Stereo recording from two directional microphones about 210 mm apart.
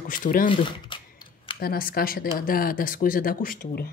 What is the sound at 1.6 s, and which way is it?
Speech, 45° left (ahead or behind).